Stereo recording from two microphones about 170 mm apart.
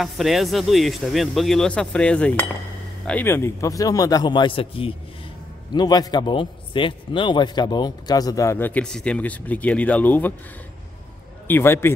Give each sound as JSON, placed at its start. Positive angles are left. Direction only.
{"t": 0.0, "sound": "a man's voice", "side_deg": 0}
{"t": 11.4, "sound": "a man's voice", "side_deg": 15}